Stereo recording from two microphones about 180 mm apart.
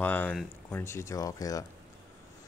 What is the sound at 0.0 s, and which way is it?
Speech, 10° left (ahead or behind).